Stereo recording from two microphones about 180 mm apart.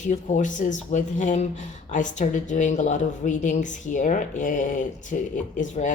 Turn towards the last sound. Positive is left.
turn(degrees=45)  # may be behind; listen again after turning